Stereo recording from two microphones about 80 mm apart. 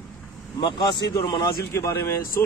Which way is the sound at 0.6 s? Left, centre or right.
Left.